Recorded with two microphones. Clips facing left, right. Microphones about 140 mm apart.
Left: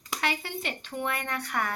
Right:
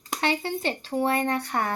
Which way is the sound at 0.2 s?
30° right (ahead or behind).